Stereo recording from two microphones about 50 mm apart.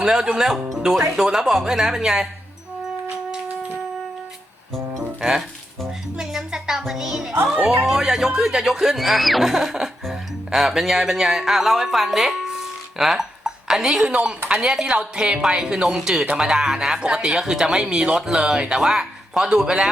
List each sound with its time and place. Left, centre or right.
0.0 s speech: centre
5.2 s speech: centre
6.1 s music: centre
7.5 s speech: centre